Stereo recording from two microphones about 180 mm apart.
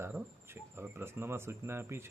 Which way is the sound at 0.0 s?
10° right (ahead or behind).